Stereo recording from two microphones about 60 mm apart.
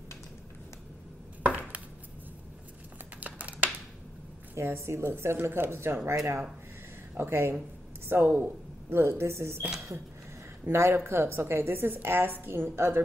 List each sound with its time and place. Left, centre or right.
1.4 s a sound: right
3.2 s a sound: right
4.6 s a woman's voice: right
6.1 s a woman's voice: right
8.9 s speech: right
10.7 s a woman's voice: right